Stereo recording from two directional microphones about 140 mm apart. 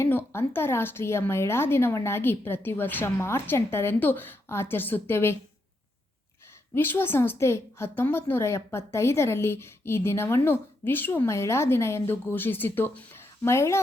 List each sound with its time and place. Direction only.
0.0 s a woman's voice: 15° left (ahead or behind)
6.7 s a woman's voice: 15° left (ahead or behind)